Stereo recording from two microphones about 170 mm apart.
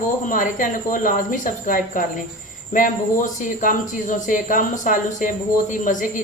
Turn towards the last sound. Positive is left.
turn(degrees=50)  # may be behind; listen again after turning